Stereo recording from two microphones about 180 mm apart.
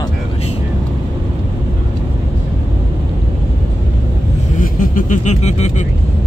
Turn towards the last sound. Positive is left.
turn(degrees=40)  # may be behind; listen again after turning